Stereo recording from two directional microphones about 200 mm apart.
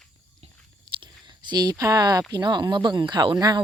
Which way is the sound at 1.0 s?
20° right (ahead or behind).